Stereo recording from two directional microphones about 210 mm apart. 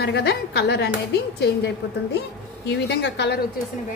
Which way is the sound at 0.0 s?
50° left (ahead or behind).